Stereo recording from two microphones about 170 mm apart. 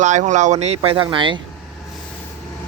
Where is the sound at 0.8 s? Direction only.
30° right (ahead or behind).